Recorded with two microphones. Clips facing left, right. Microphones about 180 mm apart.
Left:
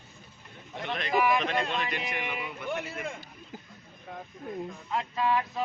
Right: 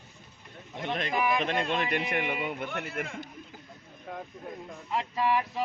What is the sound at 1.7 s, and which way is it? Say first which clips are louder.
A man's voice: right 4 dB; 55° right (ahead or behind).